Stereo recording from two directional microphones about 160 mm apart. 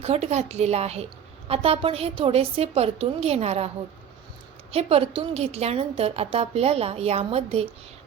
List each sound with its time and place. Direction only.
0.0 s a woman's voice: 40° right (ahead or behind)
4.7 s a woman's voice: 40° right (ahead or behind)